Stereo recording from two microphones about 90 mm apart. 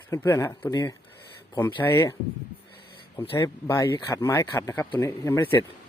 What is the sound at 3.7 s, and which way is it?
Speech, 30° left (ahead or behind).